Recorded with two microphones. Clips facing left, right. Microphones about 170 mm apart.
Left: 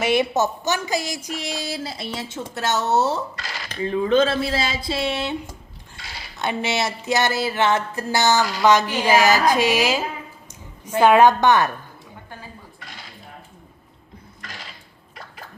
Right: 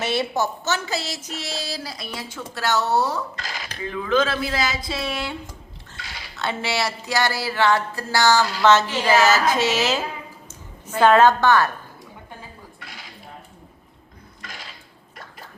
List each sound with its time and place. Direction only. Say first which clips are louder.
0.0 s speech: left 4 dB; 15° left (ahead or behind)
3.4 s a sound: even; 10° right (ahead or behind)
3.8 s a woman's voice: left 4 dB; 30° left (ahead or behind)